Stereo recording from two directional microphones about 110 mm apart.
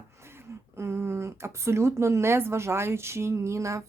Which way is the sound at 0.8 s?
25° right (ahead or behind).